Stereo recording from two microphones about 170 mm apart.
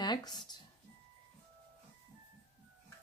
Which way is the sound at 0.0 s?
25° left (ahead or behind).